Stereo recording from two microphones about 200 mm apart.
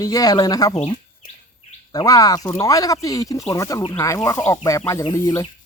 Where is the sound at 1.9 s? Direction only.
20° left (ahead or behind).